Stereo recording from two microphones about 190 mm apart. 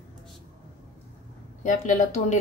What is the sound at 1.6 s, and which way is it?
Speech, 40° left (ahead or behind).